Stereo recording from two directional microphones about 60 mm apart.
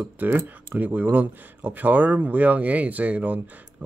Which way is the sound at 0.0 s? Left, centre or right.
Right.